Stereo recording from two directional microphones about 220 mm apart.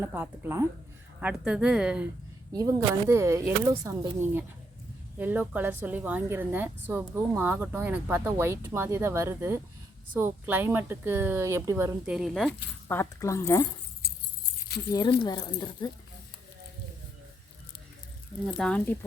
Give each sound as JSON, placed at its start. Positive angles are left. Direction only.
{"t": 0.0, "sound": "a woman's voice", "side_deg": -10}
{"t": 2.5, "sound": "a woman's voice", "side_deg": -15}
{"t": 12.9, "sound": "speech", "side_deg": 10}
{"t": 14.7, "sound": "speech", "side_deg": 45}
{"t": 15.2, "sound": "speech", "side_deg": 20}
{"t": 18.4, "sound": "speech", "side_deg": 0}